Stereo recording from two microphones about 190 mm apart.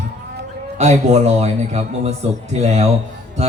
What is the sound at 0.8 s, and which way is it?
A man's voice, 35° right (ahead or behind).